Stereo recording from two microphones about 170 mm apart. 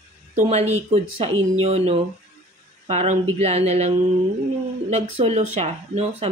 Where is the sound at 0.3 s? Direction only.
40° right (ahead or behind).